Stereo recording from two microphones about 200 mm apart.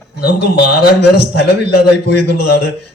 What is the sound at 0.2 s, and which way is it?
A man's voice, 50° left (ahead or behind).